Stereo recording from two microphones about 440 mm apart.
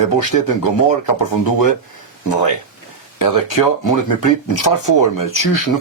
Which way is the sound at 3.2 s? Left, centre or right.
Left.